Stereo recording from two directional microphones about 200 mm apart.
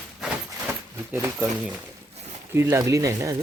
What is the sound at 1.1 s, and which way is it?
Speech, 15° right (ahead or behind).